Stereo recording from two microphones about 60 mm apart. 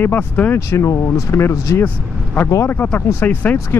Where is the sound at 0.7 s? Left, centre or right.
Left.